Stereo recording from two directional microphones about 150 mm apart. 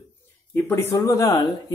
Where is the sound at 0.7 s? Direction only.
20° left (ahead or behind).